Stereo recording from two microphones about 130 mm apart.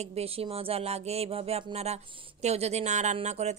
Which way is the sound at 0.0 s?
50° right (ahead or behind).